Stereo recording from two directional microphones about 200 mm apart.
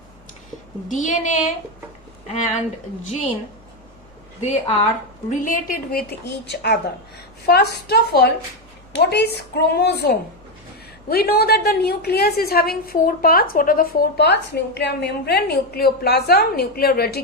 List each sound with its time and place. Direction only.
0.9 s a woman's voice: 40° left (ahead or behind)
4.4 s a woman's voice: 30° left (ahead or behind)
5.3 s a woman's voice: 40° left (ahead or behind)